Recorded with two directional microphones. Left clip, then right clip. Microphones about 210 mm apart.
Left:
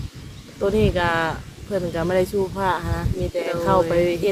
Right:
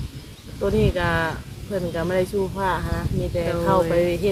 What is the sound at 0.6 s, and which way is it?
Speech, 30° left (ahead or behind).